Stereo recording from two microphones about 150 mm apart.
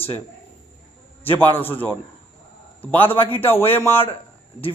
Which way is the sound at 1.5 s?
15° left (ahead or behind).